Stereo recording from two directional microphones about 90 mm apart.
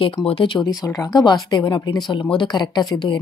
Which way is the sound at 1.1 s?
50° left (ahead or behind).